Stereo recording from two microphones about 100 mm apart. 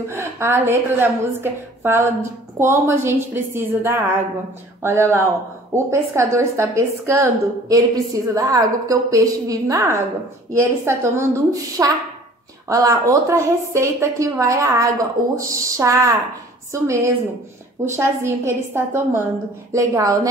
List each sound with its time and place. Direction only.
0.1 s a woman's voice: 25° right (ahead or behind)
19.7 s a woman's voice: 35° right (ahead or behind)